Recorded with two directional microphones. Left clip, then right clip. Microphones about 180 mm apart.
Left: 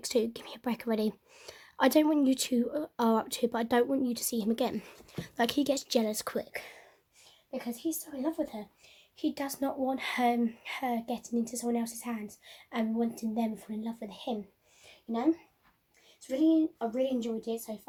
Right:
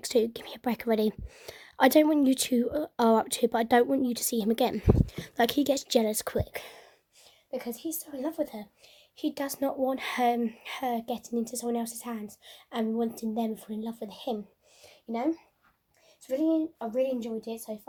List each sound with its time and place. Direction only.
0.0 s speech: 15° right (ahead or behind)
7.5 s a woman's voice: 45° right (ahead or behind)